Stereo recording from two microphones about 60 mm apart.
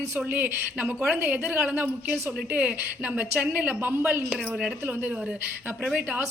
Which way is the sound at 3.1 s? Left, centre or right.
Right.